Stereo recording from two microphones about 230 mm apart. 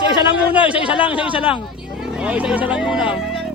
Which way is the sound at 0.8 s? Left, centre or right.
Left.